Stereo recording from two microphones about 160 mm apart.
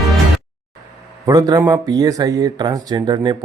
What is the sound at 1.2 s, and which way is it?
Speech, 25° right (ahead or behind).